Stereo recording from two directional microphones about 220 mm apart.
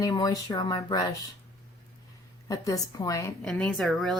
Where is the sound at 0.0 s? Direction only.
15° left (ahead or behind).